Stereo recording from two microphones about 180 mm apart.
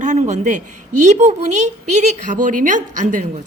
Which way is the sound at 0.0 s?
40° right (ahead or behind).